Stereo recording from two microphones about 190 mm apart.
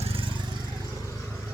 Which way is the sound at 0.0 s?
30° right (ahead or behind).